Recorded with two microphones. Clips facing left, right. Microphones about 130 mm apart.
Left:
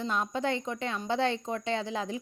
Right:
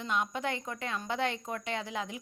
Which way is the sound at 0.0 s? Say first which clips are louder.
Left 2 dB; 30° left (ahead or behind).